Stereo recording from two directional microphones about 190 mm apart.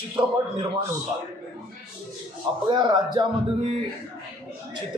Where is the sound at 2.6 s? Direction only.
25° right (ahead or behind).